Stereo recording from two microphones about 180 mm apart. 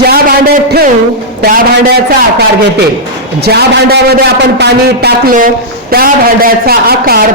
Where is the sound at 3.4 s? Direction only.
65° right (ahead or behind).